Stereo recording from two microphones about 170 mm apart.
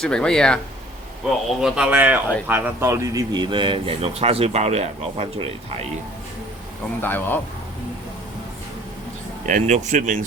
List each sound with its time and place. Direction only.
0.0 s speech: 5° left (ahead or behind)
1.6 s speech: 5° right (ahead or behind); by 5.5 s 35° right (ahead or behind)
7.0 s speech: 10° left (ahead or behind)
9.5 s speech: 45° right (ahead or behind)